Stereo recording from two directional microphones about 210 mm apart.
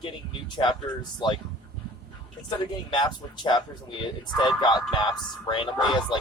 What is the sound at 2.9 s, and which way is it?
Speech, 20° left (ahead or behind).